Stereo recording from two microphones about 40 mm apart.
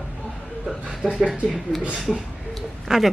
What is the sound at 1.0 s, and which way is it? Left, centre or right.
Speech, right.